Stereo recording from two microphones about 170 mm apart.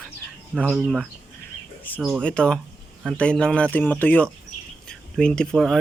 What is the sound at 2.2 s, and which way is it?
Speech, 5° left (ahead or behind).